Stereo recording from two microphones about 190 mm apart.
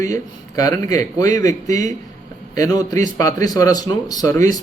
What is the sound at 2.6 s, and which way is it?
Speech, 15° left (ahead or behind).